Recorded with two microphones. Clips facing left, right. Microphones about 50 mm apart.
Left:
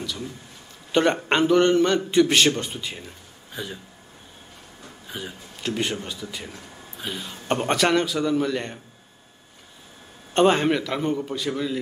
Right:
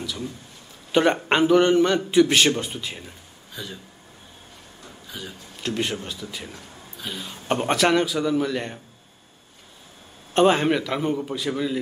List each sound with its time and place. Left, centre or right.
0.0 s a sound: centre
0.9 s a man's voice: centre
3.5 s speech: left
5.0 s a sound: left
5.6 s a man's voice: centre
10.3 s a man's voice: centre